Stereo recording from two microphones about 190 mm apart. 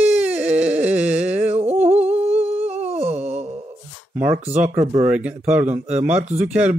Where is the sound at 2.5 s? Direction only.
35° right (ahead or behind).